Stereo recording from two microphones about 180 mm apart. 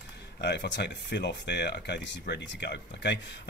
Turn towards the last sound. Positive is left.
turn(degrees=70)  # may be behind; listen again after turning